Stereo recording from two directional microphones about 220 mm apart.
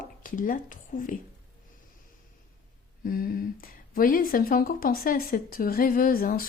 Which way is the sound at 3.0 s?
40° left (ahead or behind).